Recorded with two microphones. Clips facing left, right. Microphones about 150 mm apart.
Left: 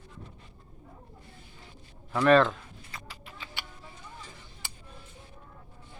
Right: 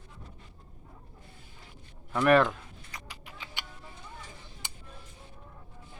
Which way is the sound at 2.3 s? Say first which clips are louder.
Left 2 dB; 15° right (ahead or behind).